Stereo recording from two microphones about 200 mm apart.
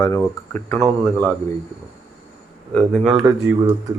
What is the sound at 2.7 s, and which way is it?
Speech, centre (ahead or behind).